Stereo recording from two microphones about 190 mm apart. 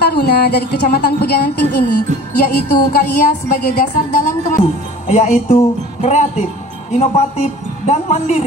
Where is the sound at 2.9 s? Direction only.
50° left (ahead or behind).